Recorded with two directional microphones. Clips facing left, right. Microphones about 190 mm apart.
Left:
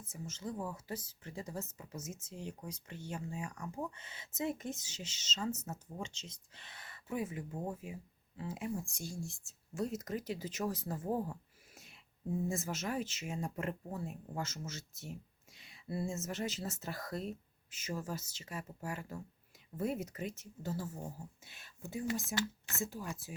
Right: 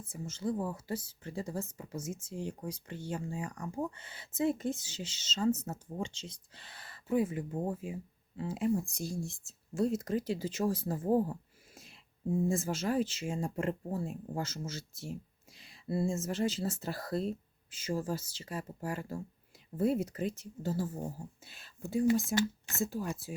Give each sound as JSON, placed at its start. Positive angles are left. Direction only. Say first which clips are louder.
{"t": 0.1, "sound": "speech", "louder": "right 7 dB", "side_deg": -30}